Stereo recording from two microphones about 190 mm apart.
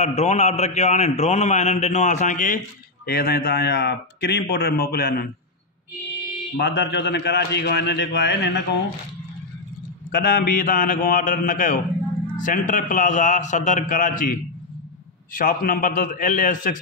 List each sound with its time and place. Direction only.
0.0 s a man's voice: 35° left (ahead or behind)
3.1 s a man's voice: 55° left (ahead or behind)
6.5 s a man's voice: 65° left (ahead or behind)
10.1 s a man's voice: 55° left (ahead or behind)